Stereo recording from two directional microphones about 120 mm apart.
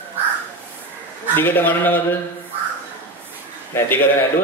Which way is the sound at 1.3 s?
15° left (ahead or behind).